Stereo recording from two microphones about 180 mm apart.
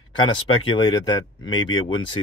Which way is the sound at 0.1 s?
25° left (ahead or behind).